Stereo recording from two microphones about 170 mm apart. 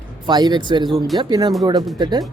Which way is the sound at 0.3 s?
25° right (ahead or behind).